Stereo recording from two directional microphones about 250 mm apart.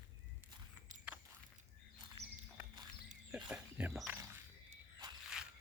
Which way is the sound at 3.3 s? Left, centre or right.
Centre.